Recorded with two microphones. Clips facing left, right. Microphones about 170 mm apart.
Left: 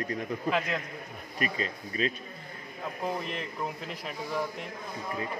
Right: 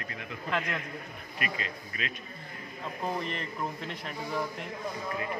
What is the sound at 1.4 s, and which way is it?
Speech, 35° left (ahead or behind).